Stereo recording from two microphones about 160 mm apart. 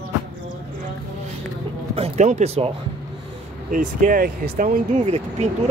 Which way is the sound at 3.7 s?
55° right (ahead or behind).